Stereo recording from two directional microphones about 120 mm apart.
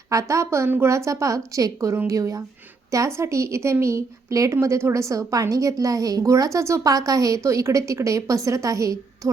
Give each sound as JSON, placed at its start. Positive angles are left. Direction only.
{"t": 0.1, "sound": "a woman's voice", "side_deg": -25}